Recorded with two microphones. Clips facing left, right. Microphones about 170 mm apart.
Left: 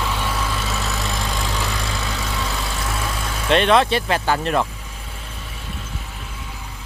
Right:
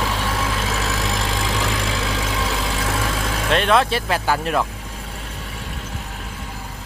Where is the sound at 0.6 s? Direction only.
90° right.